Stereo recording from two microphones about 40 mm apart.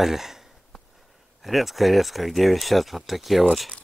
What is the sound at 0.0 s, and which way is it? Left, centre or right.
Speech, centre.